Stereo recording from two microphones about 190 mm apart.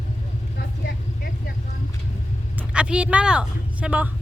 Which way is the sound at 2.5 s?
5° right (ahead or behind).